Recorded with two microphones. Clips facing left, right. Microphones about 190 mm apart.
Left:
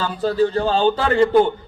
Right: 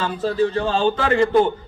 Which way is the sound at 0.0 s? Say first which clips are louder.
Left 1 dB; 35° left (ahead or behind).